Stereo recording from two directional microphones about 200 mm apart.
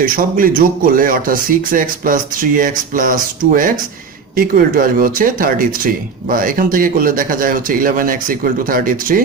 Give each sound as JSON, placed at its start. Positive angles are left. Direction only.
{"t": 0.0, "sound": "speech", "side_deg": -45}